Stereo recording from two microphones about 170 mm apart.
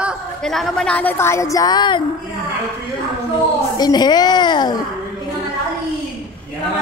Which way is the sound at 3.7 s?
25° left (ahead or behind).